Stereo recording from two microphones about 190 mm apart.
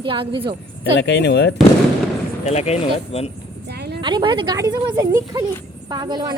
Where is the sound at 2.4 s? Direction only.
35° left (ahead or behind).